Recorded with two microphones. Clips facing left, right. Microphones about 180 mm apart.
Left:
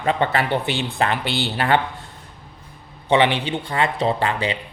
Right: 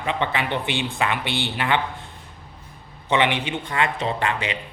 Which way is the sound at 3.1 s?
30° left (ahead or behind).